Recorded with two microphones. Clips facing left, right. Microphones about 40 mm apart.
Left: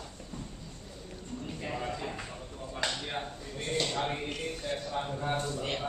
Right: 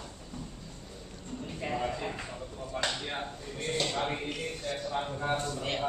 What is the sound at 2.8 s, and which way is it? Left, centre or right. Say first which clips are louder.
Chop: left 2 dB; centre.